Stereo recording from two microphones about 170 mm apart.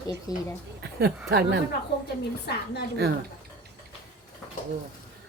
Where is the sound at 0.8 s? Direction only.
75° right (ahead or behind).